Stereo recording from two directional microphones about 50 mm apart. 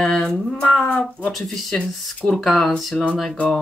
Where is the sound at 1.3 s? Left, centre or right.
Centre.